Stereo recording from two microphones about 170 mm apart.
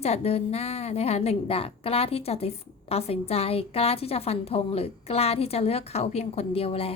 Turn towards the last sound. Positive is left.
turn(degrees=35)  # may be behind; listen again after turning